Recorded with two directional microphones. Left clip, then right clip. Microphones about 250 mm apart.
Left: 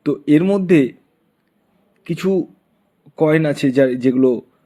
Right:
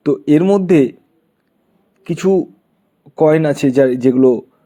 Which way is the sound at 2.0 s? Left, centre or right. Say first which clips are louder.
Right 4 dB; centre.